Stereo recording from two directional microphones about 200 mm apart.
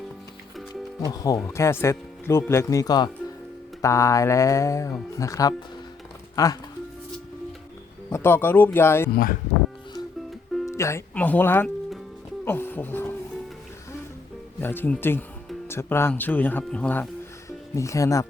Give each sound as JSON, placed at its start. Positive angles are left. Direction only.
{"t": 1.0, "sound": "speech", "side_deg": 15}
{"t": 8.1, "sound": "speech", "side_deg": 10}
{"t": 10.7, "sound": "speech", "side_deg": 15}
{"t": 14.6, "sound": "speech", "side_deg": 10}